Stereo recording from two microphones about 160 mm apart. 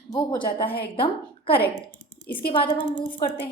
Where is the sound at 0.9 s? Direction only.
35° left (ahead or behind).